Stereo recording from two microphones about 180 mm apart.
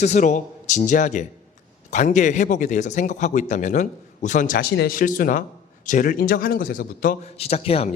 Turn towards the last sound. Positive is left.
turn(degrees=35)  # may be behind; listen again after turning